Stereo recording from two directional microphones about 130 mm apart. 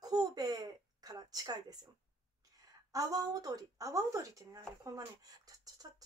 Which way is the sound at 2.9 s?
30° right (ahead or behind).